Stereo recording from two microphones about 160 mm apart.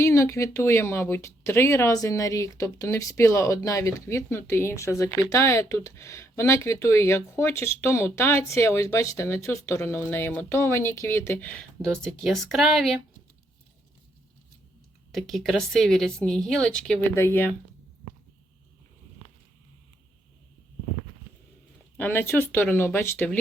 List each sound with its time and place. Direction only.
0.0 s a woman's voice: 20° left (ahead or behind); by 13.0 s centre (ahead or behind)
15.1 s speech: centre (ahead or behind)
21.9 s speech: 15° left (ahead or behind)